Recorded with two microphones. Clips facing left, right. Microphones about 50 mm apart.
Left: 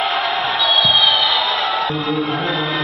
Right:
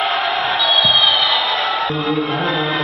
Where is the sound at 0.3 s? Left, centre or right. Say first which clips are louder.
Right 1 dB; centre.